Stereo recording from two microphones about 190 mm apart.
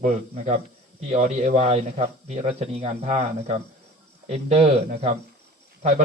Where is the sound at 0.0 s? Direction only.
40° right (ahead or behind).